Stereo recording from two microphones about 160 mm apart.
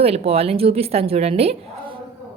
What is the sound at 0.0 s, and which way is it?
A woman's voice, 40° right (ahead or behind).